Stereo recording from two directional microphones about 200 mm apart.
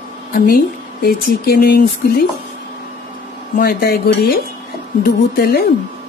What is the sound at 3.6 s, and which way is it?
Speech, 50° left (ahead or behind).